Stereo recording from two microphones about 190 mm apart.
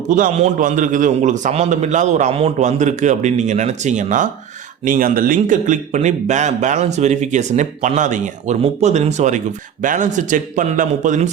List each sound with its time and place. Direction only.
0.1 s speech: 40° right (ahead or behind)